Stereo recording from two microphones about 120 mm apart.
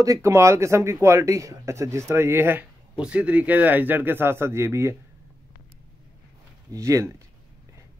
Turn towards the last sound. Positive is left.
turn(degrees=-25)  # may be behind; listen again after turning